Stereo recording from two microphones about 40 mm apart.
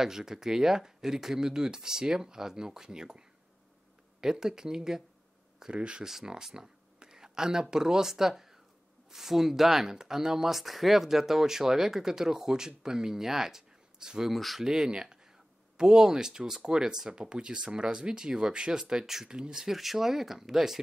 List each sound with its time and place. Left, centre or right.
0.0 s speech: centre
6.0 s speech: centre
14.3 s speech: centre
14.6 s speech: centre
19.2 s speech: right
19.6 s speech: centre